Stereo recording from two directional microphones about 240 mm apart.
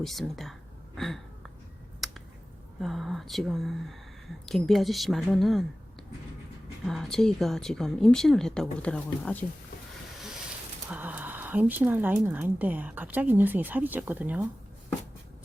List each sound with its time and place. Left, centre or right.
0.0 s speech: centre
2.0 s finger snapping: centre
2.8 s speech: centre
6.8 s speech: centre
10.8 s speech: centre